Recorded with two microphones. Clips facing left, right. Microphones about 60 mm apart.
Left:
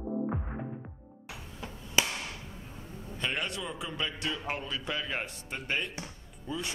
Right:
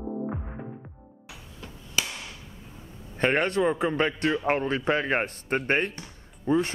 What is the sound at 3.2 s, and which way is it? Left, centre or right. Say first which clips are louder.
A man's voice: right 12 dB; right.